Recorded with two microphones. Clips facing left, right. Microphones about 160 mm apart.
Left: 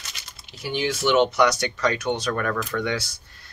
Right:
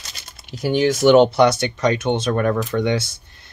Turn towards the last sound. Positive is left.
turn(degrees=-25)  # may be behind; listen again after turning